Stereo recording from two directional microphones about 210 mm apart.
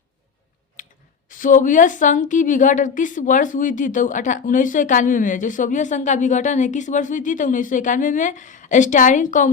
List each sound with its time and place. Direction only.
1.3 s a woman's voice: 40° left (ahead or behind)